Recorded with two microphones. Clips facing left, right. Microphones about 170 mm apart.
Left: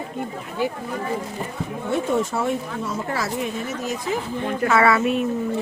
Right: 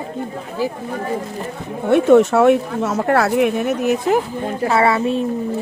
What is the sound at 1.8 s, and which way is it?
Speech, 70° right (ahead or behind).